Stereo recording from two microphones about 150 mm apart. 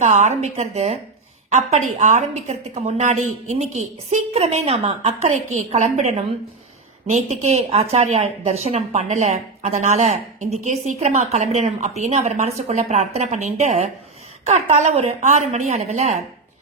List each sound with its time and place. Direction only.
0.0 s speech: 50° right (ahead or behind)